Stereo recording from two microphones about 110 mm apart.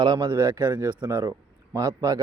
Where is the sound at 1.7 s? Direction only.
30° right (ahead or behind).